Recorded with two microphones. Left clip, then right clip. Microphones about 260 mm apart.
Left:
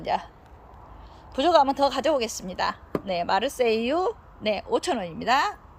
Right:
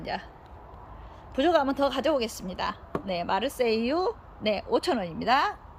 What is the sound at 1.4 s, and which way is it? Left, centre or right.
A woman's voice, centre.